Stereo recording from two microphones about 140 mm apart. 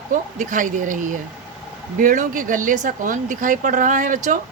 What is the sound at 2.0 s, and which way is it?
Speech, 75° right (ahead or behind).